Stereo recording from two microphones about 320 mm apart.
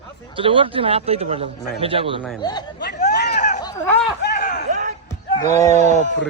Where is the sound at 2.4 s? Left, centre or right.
Centre.